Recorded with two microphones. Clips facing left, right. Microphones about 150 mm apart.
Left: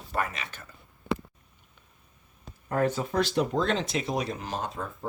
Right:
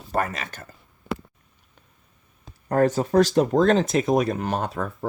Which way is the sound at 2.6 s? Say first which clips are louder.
Right 6 dB; 40° right (ahead or behind).